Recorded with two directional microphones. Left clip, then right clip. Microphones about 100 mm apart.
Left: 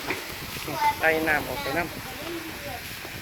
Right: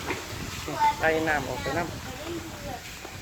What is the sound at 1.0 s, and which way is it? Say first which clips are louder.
Speech: left 2 dB; centre (ahead or behind).